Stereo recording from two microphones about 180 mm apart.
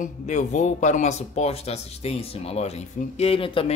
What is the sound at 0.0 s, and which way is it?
A man's voice, 40° left (ahead or behind).